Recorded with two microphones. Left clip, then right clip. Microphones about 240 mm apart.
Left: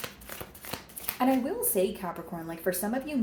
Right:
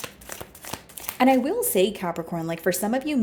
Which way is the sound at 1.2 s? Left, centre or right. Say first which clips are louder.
Right 8 dB; right.